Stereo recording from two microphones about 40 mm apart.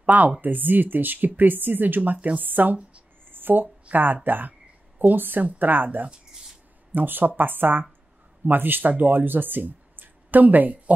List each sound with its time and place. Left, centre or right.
0.0 s speech: right
3.3 s a sound: right
3.9 s speech: right